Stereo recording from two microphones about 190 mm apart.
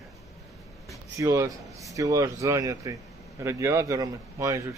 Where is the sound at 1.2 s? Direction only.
15° right (ahead or behind).